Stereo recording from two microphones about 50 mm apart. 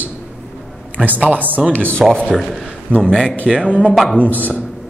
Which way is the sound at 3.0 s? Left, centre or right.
Centre.